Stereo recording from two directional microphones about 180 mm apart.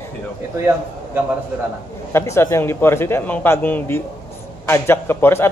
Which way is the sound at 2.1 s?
15° left (ahead or behind).